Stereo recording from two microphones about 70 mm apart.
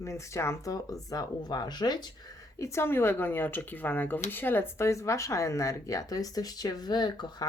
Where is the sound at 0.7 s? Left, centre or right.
Left.